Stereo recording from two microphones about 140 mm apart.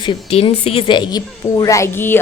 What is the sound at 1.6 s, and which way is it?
Speech, 20° left (ahead or behind).